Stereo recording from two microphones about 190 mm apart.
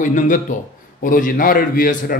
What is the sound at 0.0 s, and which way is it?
A man's voice, 45° left (ahead or behind).